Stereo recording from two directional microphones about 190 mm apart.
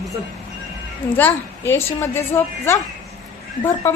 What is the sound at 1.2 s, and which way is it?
A woman's voice, 10° left (ahead or behind).